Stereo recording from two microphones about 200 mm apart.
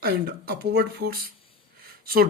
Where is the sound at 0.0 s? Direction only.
50° right (ahead or behind).